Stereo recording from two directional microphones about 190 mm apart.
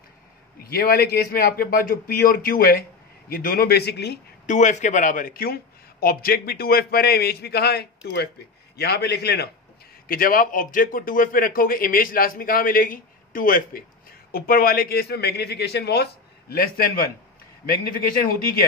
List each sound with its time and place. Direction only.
0.6 s a man's voice: 50° left (ahead or behind)
4.5 s a man's voice: 40° left (ahead or behind); by 9.5 s 60° left (ahead or behind)
10.0 s a man's voice: 50° left (ahead or behind)